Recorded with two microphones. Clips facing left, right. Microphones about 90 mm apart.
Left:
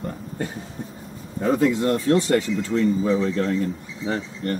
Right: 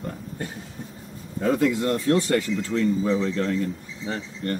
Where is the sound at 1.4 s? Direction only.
25° left (ahead or behind).